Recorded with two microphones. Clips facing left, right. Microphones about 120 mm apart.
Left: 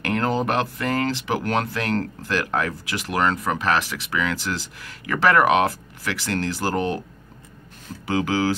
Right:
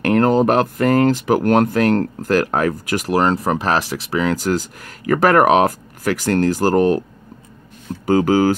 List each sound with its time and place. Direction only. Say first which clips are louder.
0.0 s speech: right 9 dB; 45° right (ahead or behind)
8.1 s speech: right 8 dB; 45° right (ahead or behind)